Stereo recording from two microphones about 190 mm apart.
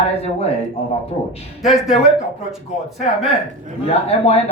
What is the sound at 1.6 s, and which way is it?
Speech, centre (ahead or behind).